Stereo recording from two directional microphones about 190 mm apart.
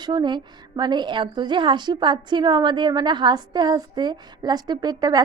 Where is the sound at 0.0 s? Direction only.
25° right (ahead or behind).